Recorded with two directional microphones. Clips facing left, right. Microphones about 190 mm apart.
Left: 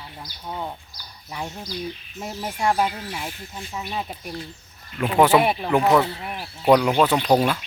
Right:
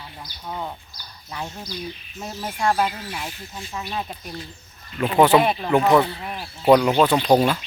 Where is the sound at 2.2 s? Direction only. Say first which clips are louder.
Even; 10° left (ahead or behind).